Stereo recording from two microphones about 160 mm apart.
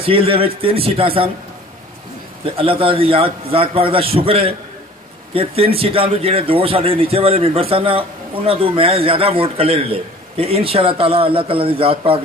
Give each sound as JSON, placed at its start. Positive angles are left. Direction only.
{"t": 0.0, "sound": "a man's voice", "side_deg": -35}
{"t": 2.5, "sound": "a man's voice", "side_deg": -35}